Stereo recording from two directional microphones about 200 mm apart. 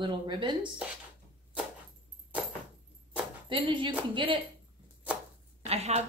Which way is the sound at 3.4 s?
25° right (ahead or behind).